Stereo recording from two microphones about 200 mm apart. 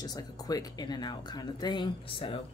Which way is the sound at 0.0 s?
20° left (ahead or behind).